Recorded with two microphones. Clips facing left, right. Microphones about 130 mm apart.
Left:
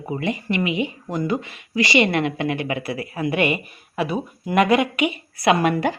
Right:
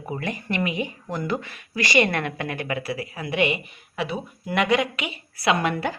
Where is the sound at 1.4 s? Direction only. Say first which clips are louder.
Left 6 dB; 50° right (ahead or behind).